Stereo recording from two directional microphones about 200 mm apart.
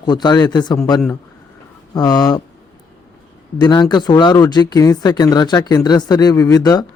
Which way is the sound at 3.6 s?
20° left (ahead or behind).